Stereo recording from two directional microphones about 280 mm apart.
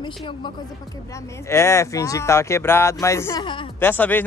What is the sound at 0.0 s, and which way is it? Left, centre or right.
Speech, centre.